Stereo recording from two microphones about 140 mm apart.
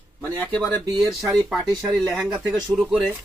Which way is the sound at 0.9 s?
25° right (ahead or behind).